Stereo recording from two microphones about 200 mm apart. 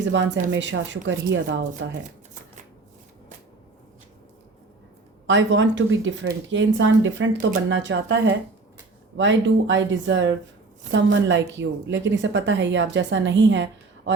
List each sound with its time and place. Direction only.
0.1 s speech: 65° right (ahead or behind)
5.2 s speech: 65° right (ahead or behind)